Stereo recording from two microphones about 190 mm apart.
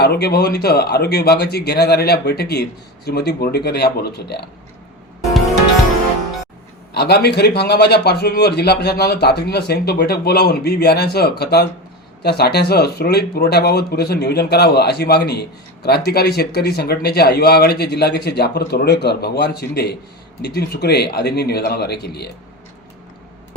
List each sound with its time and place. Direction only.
0.0 s speech: 55° left (ahead or behind)
6.9 s speech: 60° left (ahead or behind)